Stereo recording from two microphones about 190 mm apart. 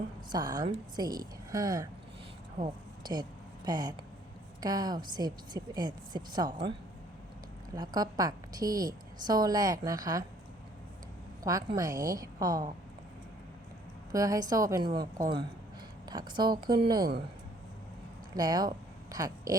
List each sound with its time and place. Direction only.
0.3 s a woman's voice: 20° right (ahead or behind)
7.8 s a woman's voice: 20° right (ahead or behind)
11.4 s a woman's voice: 15° right (ahead or behind)
14.1 s a woman's voice: 15° right (ahead or behind)
18.3 s a woman's voice: 20° right (ahead or behind)